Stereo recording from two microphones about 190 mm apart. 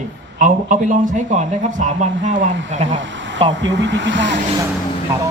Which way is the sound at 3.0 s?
75° right (ahead or behind).